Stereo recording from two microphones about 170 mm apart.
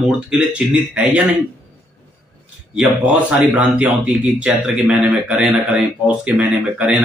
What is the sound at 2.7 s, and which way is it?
A man's voice, 5° right (ahead or behind).